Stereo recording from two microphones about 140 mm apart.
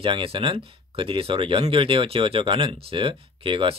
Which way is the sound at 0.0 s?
40° right (ahead or behind).